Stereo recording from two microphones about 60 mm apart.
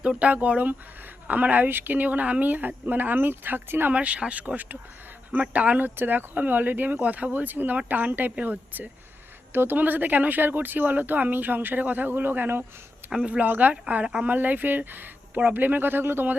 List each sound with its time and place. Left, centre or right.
0.0 s speech: centre; by 3.9 s right
3.9 s speech: centre
9.5 s speech: right
13.0 s a sound: right
13.4 s speech: right
14.3 s speech: right